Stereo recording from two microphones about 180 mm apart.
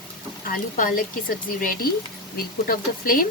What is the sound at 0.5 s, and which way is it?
Speech, 50° left (ahead or behind).